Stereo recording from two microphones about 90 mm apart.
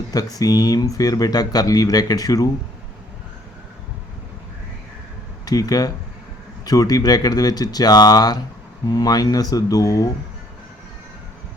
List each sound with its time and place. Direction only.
0.1 s speech: 45° left (ahead or behind)
5.5 s speech: 45° left (ahead or behind)